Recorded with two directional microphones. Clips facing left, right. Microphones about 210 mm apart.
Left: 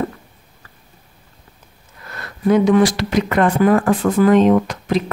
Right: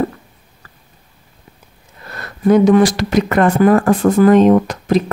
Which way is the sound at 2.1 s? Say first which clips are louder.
Right 3 dB; 45° right (ahead or behind).